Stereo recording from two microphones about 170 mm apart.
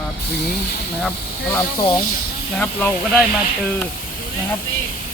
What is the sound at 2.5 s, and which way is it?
Speech, 10° left (ahead or behind).